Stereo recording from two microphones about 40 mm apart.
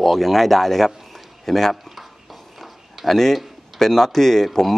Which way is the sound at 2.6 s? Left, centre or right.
Centre.